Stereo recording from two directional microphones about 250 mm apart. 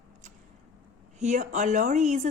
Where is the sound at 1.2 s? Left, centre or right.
Right.